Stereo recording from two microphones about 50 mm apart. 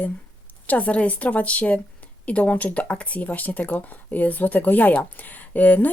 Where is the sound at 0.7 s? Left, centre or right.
Left.